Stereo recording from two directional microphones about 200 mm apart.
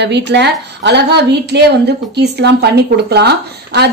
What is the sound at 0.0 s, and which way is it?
A woman's voice, 60° right (ahead or behind).